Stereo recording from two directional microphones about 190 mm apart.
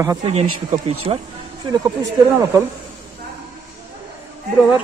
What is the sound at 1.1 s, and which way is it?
Speech, 30° right (ahead or behind).